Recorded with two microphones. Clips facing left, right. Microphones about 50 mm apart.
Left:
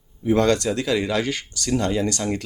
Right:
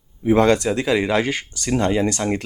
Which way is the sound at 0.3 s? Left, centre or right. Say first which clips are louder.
Right 3 dB; right.